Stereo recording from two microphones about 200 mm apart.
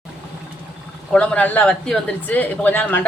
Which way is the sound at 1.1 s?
5° left (ahead or behind).